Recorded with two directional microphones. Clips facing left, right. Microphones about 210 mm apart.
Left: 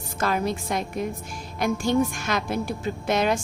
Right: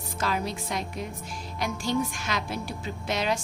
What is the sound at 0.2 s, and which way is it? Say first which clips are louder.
A woman's voice: left 5 dB; 50° left (ahead or behind).